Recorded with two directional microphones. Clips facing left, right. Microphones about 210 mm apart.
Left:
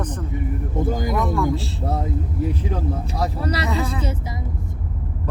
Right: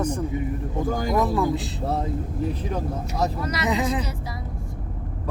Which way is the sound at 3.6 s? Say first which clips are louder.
Right 1 dB; 20° right (ahead or behind).